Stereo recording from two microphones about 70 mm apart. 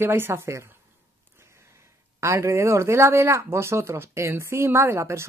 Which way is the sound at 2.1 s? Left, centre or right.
Right.